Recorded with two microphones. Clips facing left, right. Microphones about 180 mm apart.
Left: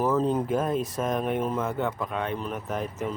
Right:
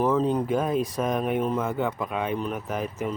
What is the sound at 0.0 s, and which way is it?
Speech, 5° left (ahead or behind).